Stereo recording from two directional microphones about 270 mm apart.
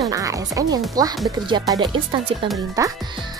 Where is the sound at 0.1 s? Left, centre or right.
Centre.